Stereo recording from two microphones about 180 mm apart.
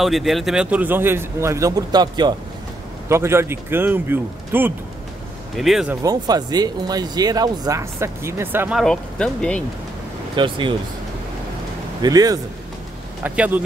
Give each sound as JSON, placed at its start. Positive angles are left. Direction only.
{"t": 0.0, "sound": "a man's voice", "side_deg": 0}
{"t": 6.0, "sound": "speech", "side_deg": -20}
{"t": 8.8, "sound": "speech", "side_deg": 5}
{"t": 10.3, "sound": "speech", "side_deg": -25}
{"t": 12.0, "sound": "speech", "side_deg": -20}
{"t": 13.2, "sound": "a man's voice", "side_deg": -10}